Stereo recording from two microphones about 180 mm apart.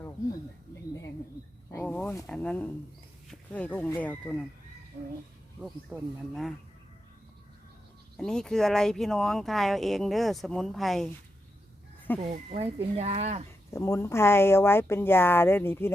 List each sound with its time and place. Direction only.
1.7 s wild animals: 10° left (ahead or behind)
2.2 s speech: 5° left (ahead or behind)
5.5 s speech: 5° right (ahead or behind)
8.1 s speech: 5° left (ahead or behind)
12.2 s speech: 35° right (ahead or behind)
13.7 s speech: 15° left (ahead or behind)